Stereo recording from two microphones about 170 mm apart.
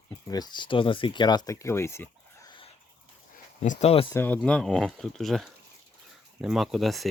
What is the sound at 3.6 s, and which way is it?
Speech, 45° left (ahead or behind).